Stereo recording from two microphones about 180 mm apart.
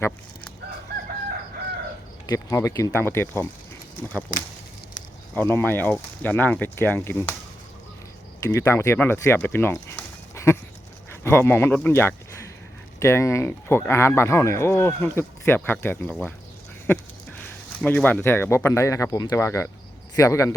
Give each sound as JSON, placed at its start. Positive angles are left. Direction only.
{"t": 2.2, "sound": "speech", "side_deg": 20}
{"t": 5.3, "sound": "speech", "side_deg": 10}
{"t": 8.4, "sound": "speech", "side_deg": 15}
{"t": 16.0, "sound": "speech", "side_deg": 0}
{"t": 16.8, "sound": "a sound", "side_deg": 10}
{"t": 17.8, "sound": "speech", "side_deg": 10}